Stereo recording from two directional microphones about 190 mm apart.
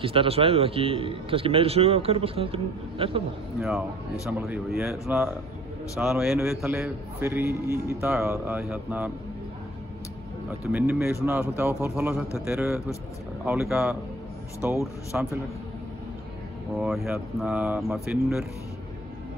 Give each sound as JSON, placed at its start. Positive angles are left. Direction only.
{"t": 0.0, "sound": "speech", "side_deg": -30}
{"t": 4.3, "sound": "a man's voice", "side_deg": -10}
{"t": 5.9, "sound": "a man's voice", "side_deg": -5}
{"t": 10.7, "sound": "a man's voice", "side_deg": -5}
{"t": 16.7, "sound": "speech", "side_deg": 0}